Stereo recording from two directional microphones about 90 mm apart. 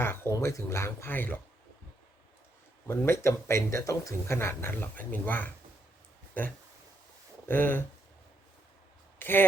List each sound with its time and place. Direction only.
0.0 s speech: 25° left (ahead or behind)
2.8 s speech: 30° left (ahead or behind)
7.4 s speech: 25° left (ahead or behind)
9.1 s speech: 25° left (ahead or behind)